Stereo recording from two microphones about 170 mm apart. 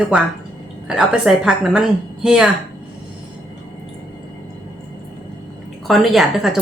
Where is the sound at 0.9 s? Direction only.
5° right (ahead or behind).